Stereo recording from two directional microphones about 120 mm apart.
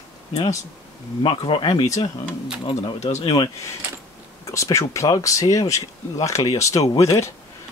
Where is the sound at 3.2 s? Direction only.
45° left (ahead or behind).